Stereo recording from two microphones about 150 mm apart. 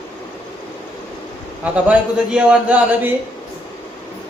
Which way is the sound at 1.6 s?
10° right (ahead or behind).